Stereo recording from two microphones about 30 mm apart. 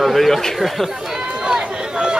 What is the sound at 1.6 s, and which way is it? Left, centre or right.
Run, right.